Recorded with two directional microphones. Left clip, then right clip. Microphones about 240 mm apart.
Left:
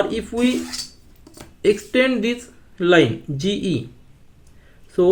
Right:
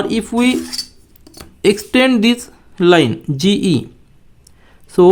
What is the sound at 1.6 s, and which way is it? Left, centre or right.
Speech, right.